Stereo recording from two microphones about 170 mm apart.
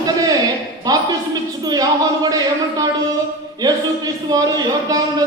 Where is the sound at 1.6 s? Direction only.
25° right (ahead or behind).